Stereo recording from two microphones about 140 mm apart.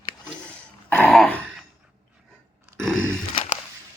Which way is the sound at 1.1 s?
5° left (ahead or behind).